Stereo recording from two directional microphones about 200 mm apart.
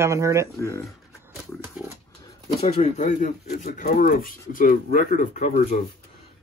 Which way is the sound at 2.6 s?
35° left (ahead or behind).